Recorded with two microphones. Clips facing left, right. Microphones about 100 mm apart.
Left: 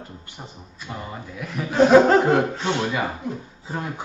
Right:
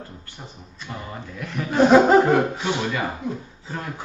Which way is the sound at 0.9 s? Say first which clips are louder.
Left 1 dB; 5° left (ahead or behind).